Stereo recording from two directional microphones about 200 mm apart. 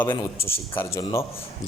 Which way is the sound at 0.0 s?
10° left (ahead or behind).